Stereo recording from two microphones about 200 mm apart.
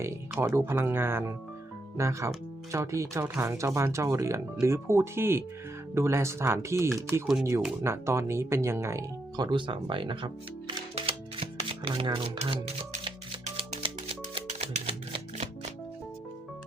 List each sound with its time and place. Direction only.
0.0 s speech: 15° right (ahead or behind)
7.4 s music: 15° right (ahead or behind); by 15.4 s 30° right (ahead or behind)